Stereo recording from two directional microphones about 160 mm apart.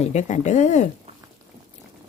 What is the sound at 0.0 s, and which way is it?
Speech, 45° left (ahead or behind).